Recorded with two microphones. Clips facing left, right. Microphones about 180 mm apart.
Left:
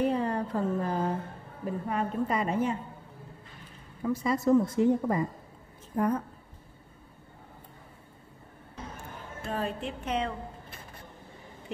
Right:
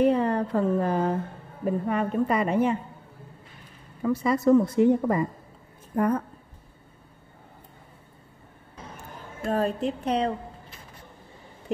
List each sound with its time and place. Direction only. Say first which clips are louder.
0.0 s a sound: right 6 dB; 65° right (ahead or behind)
1.6 s speech: right 5 dB; 70° right (ahead or behind)
4.0 s speech: right 4 dB; 70° right (ahead or behind)
9.5 s a woman's voice: right 8 dB; 40° right (ahead or behind)